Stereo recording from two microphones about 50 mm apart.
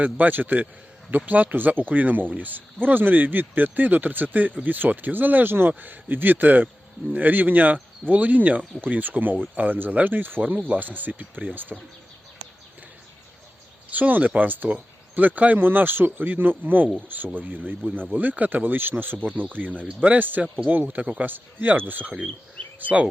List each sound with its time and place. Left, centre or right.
0.0 s speech: right
13.9 s speech: right